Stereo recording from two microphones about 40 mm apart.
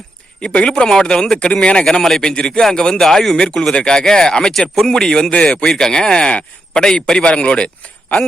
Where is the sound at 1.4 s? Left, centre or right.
Left.